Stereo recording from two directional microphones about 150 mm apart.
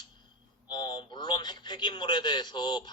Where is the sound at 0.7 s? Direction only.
30° left (ahead or behind).